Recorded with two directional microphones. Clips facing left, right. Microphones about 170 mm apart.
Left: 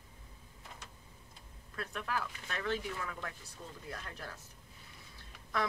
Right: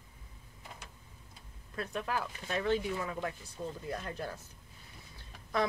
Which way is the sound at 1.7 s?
30° right (ahead or behind).